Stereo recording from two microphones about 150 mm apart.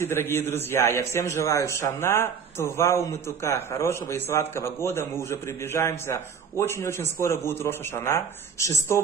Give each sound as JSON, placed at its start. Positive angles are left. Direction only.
{"t": 0.0, "sound": "a man's voice", "side_deg": 15}